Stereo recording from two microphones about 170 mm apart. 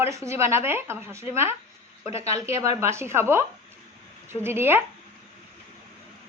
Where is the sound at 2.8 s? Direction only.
15° right (ahead or behind).